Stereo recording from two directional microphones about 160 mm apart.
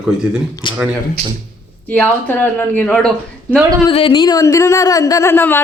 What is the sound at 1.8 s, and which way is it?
A woman's voice, 10° left (ahead or behind).